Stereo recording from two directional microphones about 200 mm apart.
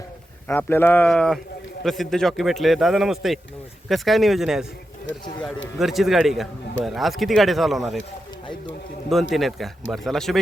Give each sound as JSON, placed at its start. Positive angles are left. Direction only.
{"t": 0.4, "sound": "a man's voice", "side_deg": 10}
{"t": 5.1, "sound": "speech", "side_deg": 65}
{"t": 5.8, "sound": "a man's voice", "side_deg": 0}
{"t": 9.3, "sound": "a man's voice", "side_deg": 0}